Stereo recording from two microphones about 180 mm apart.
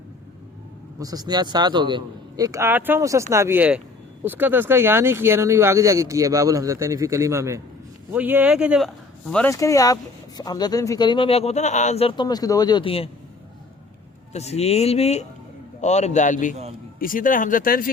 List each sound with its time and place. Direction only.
0.9 s a man's voice: 20° right (ahead or behind); by 8.9 s 5° right (ahead or behind)
9.5 s speech: 20° left (ahead or behind)
14.3 s speech: 35° left (ahead or behind); by 17.9 s 50° left (ahead or behind)